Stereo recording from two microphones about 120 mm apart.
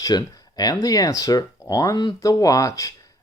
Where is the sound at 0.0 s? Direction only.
35° left (ahead or behind).